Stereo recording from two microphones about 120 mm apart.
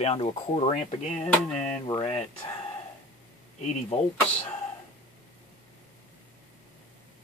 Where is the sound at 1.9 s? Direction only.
50° left (ahead or behind).